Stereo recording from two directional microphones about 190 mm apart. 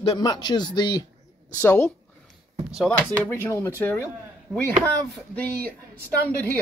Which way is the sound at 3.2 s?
10° left (ahead or behind).